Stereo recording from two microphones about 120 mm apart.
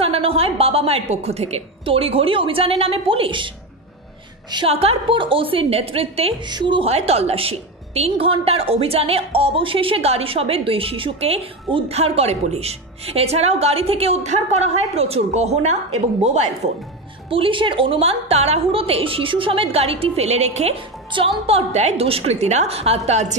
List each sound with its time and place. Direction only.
0.0 s a woman's voice: 55° right (ahead or behind)
4.6 s a woman's voice: 55° right (ahead or behind)
6.4 s a woman's voice: 40° right (ahead or behind)
6.9 s a woman's voice: 60° right (ahead or behind)
17.3 s a woman's voice: 45° right (ahead or behind); by 20.8 s 65° right (ahead or behind)
21.1 s a woman's voice: 45° right (ahead or behind); by 23.3 s 70° right (ahead or behind)